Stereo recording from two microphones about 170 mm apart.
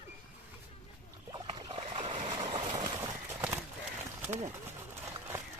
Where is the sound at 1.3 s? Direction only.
25° right (ahead or behind).